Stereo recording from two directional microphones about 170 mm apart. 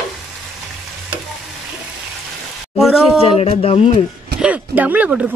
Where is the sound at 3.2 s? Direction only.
35° left (ahead or behind).